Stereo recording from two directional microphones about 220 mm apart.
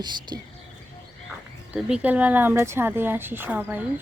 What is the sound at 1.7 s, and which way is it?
Speech, 5° right (ahead or behind).